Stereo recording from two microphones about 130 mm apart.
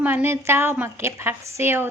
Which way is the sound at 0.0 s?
15° right (ahead or behind).